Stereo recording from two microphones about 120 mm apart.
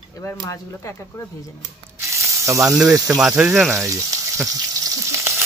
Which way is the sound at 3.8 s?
25° right (ahead or behind).